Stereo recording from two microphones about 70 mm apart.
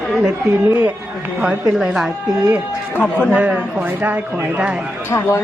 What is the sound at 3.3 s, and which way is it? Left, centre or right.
Speech, right.